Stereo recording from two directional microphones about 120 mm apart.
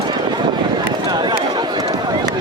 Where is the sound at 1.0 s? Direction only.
35° right (ahead or behind).